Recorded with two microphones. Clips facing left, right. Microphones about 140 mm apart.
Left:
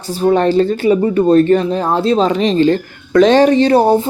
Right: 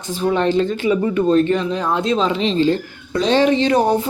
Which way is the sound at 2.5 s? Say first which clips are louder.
Left 4 dB; 65° left (ahead or behind).